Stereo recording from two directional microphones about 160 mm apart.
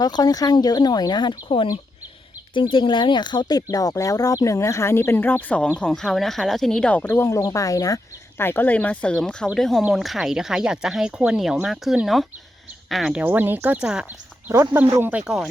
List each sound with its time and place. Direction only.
0.0 s speech: 25° left (ahead or behind); by 15.4 s 5° right (ahead or behind)